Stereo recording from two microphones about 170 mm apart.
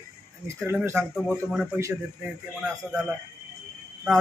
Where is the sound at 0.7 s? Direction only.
10° right (ahead or behind).